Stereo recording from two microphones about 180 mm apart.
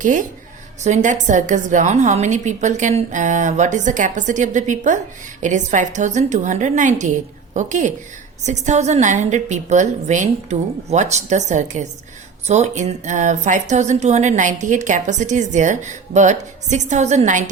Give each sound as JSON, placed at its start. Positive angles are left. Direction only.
{"t": 0.0, "sound": "a woman's voice", "side_deg": -45}